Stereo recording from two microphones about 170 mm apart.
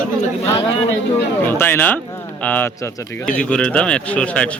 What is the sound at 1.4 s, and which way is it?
A man's voice, 15° left (ahead or behind).